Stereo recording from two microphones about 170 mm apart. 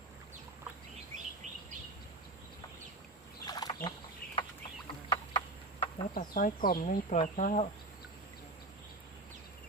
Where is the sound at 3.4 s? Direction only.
25° left (ahead or behind).